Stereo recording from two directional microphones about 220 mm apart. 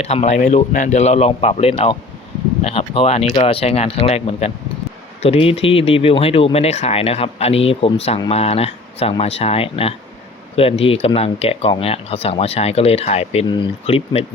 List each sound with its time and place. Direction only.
0.0 s speech: 30° left (ahead or behind)